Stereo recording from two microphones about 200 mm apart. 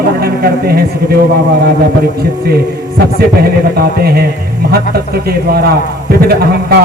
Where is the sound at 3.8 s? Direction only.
50° right (ahead or behind).